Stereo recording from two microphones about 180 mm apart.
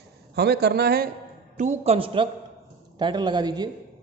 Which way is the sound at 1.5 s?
40° right (ahead or behind).